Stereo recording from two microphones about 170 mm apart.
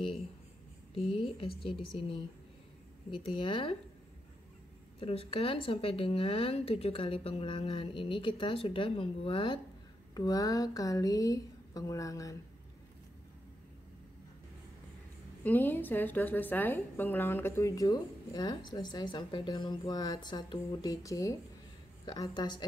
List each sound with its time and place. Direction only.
1.1 s speech: 35° left (ahead or behind)
5.0 s a woman's voice: 35° left (ahead or behind); by 12.4 s 20° left (ahead or behind)
15.4 s a woman's voice: 10° left (ahead or behind)